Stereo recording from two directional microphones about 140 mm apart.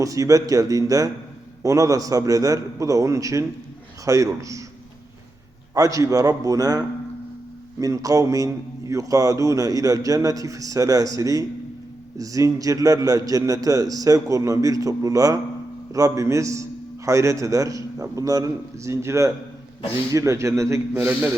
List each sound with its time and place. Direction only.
0.0 s a man's voice: 25° right (ahead or behind)
5.7 s a man's voice: 25° right (ahead or behind)